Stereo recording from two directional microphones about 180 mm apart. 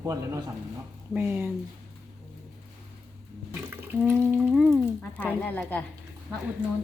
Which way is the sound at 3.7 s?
15° right (ahead or behind).